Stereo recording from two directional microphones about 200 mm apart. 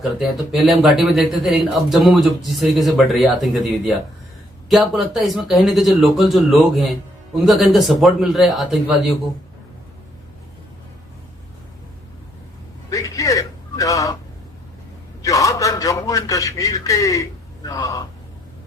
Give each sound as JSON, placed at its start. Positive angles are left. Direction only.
{"t": 0.0, "sound": "speech", "side_deg": 0}
{"t": 12.9, "sound": "a sound", "side_deg": 15}
{"t": 15.2, "sound": "a man's voice", "side_deg": 15}